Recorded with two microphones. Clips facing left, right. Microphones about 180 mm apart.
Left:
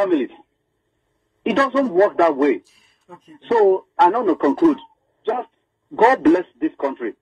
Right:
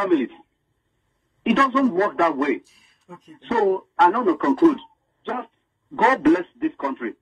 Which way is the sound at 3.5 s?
35° left (ahead or behind).